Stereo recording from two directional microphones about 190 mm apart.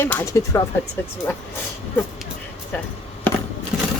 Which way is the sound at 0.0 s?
10° left (ahead or behind).